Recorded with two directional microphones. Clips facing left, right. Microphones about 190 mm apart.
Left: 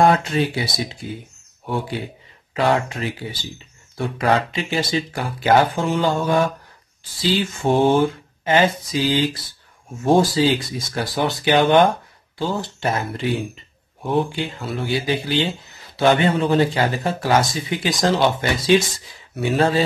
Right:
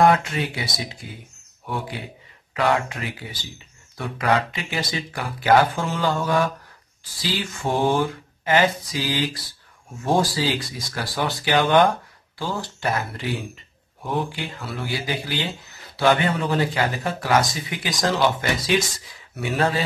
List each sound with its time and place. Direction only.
0.0 s a sound: 30° left (ahead or behind)
1.0 s speech: 25° left (ahead or behind)
2.5 s speech: 30° left (ahead or behind)
14.0 s speech: 25° left (ahead or behind)